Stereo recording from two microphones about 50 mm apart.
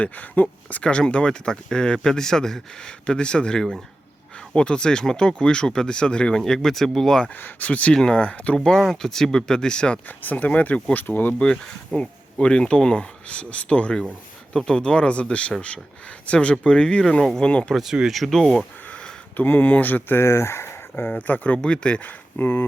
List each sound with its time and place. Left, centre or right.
0.0 s speech: left
0.7 s speech: left
7.3 s speech: left
8.5 s speech: centre
10.1 s speech: left
10.9 s speech: left
11.9 s speech: centre
14.5 s speech: centre
18.9 s a sound: centre
19.4 s speech: left
20.2 s speech: left
21.1 s speech: left
21.6 s speech: centre
22.0 s speech: left